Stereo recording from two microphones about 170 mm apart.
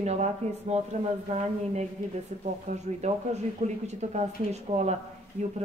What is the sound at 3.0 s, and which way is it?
Speech, 40° right (ahead or behind).